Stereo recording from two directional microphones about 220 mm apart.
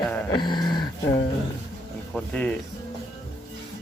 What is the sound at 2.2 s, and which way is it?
Speech, 5° left (ahead or behind).